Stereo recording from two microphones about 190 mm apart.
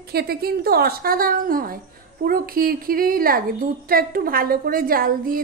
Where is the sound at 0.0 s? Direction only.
55° right (ahead or behind).